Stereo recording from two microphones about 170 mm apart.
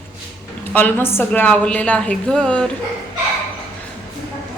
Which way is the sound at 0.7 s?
10° left (ahead or behind).